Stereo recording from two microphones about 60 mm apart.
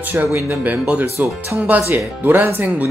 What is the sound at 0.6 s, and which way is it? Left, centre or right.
Speech, right.